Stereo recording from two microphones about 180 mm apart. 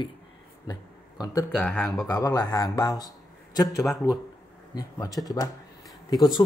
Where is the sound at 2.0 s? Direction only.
20° left (ahead or behind).